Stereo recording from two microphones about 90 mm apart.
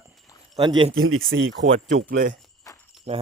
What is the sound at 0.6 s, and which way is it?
Speech, 55° right (ahead or behind).